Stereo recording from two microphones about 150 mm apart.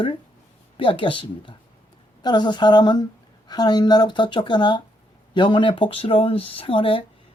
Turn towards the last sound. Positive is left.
turn(degrees=35)  # may be behind; listen again after turning